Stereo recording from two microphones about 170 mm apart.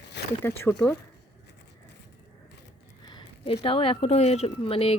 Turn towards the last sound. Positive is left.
turn(degrees=35)  # may be behind; listen again after turning